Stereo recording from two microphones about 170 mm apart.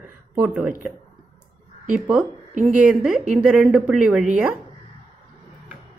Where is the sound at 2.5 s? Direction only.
50° right (ahead or behind).